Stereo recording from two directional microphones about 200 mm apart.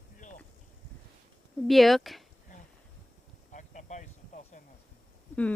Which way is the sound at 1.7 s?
Centre (ahead or behind).